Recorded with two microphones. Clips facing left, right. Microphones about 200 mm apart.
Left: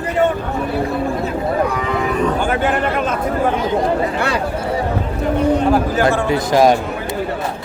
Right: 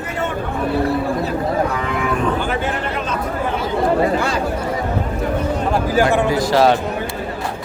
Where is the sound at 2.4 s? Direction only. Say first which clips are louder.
Left 4 dB; 50° left (ahead or behind).